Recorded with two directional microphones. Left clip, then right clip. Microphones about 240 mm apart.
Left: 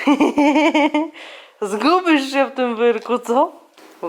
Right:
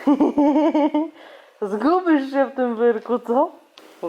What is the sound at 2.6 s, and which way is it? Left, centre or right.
Speech, left.